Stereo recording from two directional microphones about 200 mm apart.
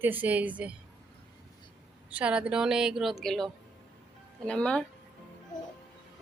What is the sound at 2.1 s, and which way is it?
A woman's voice, 5° right (ahead or behind).